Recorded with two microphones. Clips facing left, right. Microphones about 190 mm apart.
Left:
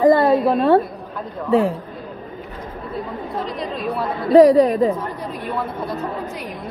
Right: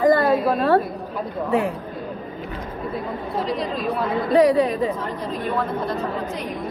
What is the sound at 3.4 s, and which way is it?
Speech, centre (ahead or behind).